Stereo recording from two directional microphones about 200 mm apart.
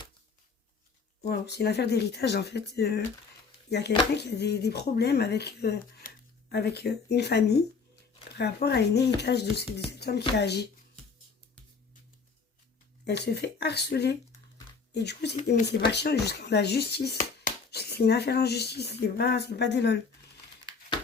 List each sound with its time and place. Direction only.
1.3 s speech: 55° left (ahead or behind)
8.6 s speech: 55° left (ahead or behind)
13.1 s speech: 55° left (ahead or behind)